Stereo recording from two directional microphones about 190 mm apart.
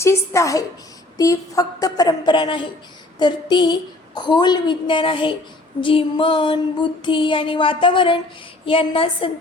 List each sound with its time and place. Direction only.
0.0 s a woman's voice: 15° left (ahead or behind)
1.2 s female singing: 20° left (ahead or behind)